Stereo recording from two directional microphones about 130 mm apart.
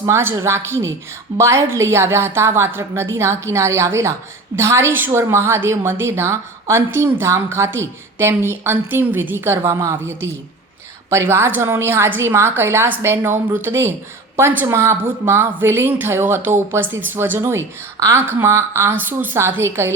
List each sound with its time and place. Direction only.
0.0 s a woman's voice: 20° right (ahead or behind)